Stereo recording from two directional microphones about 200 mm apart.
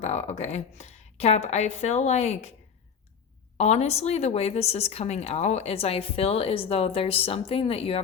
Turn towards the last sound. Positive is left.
turn(degrees=30)  # may be behind; listen again after turning